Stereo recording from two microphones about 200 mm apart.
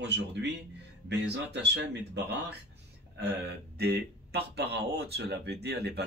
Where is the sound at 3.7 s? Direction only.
55° right (ahead or behind).